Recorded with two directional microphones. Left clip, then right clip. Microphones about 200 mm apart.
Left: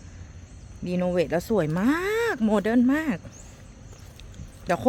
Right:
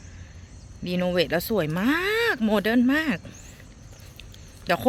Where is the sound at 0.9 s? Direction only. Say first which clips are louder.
Right 1 dB; 5° left (ahead or behind).